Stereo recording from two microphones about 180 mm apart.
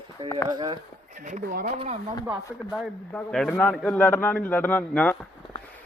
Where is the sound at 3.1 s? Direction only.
5° left (ahead or behind).